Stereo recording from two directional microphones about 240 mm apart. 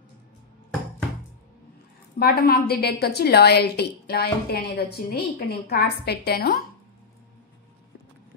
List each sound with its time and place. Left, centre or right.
2.1 s a woman's voice: left